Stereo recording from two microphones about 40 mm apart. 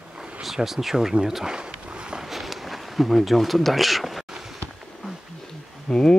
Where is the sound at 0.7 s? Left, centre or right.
Centre.